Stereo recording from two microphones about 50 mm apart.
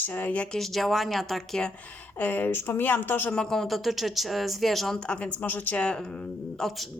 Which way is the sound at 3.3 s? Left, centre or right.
Centre.